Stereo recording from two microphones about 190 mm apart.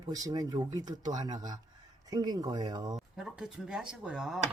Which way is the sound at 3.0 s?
Centre (ahead or behind).